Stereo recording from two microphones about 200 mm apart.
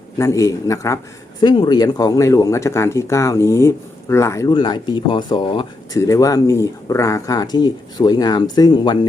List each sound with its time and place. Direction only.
0.2 s speech: 15° left (ahead or behind)